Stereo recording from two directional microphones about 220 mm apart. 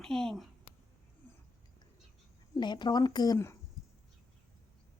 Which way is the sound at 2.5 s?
20° left (ahead or behind).